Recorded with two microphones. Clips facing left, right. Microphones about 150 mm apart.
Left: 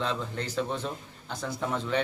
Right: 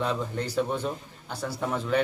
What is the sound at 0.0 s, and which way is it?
A man's voice, 10° right (ahead or behind).